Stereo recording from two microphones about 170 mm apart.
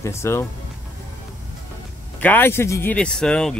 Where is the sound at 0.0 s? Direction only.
15° left (ahead or behind).